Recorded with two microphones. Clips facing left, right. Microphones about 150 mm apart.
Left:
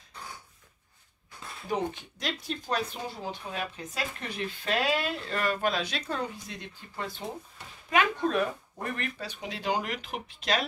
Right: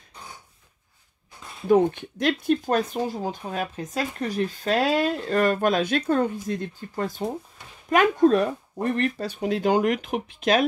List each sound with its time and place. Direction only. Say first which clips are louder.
1.7 s speech: right 12 dB; 55° right (ahead or behind)